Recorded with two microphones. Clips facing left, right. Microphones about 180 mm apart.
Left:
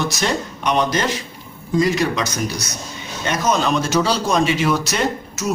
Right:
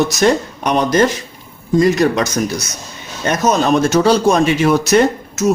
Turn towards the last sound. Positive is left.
turn(degrees=-50)  # may be behind; listen again after turning